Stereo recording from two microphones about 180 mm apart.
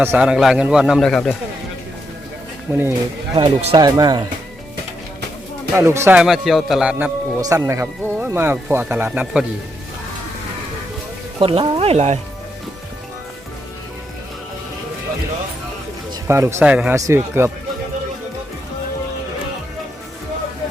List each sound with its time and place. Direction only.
0.0 s a man's voice: 10° right (ahead or behind)
2.7 s speech: 15° right (ahead or behind)
3.3 s speech: 30° right (ahead or behind)
3.8 s speech: 20° right (ahead or behind)
5.7 s speech: 15° right (ahead or behind)
6.1 s a man's voice: centre (ahead or behind)
7.4 s speech: 20° right (ahead or behind)
11.3 s speech: 30° right (ahead or behind)
16.2 s speech: 15° right (ahead or behind)